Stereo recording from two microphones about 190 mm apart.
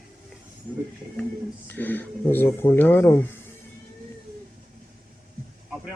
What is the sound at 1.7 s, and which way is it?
Speech, 10° left (ahead or behind).